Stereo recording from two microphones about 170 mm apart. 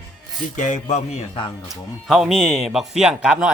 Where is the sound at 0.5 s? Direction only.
45° left (ahead or behind).